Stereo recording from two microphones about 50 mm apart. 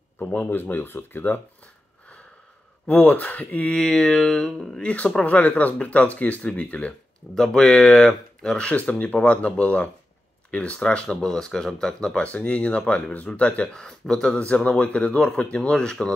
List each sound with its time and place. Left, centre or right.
0.2 s speech: left
0.6 s speech: left
2.9 s speech: left
3.7 s speech: centre
4.8 s speech: left
7.3 s speech: centre
8.6 s speech: left
12.2 s speech: left
13.7 s speech: centre
14.4 s speech: left